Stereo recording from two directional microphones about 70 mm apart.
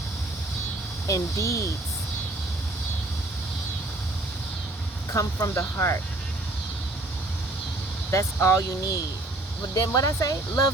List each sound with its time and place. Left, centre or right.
1.0 s speech: left
5.1 s speech: left
8.1 s speech: left
9.7 s speech: left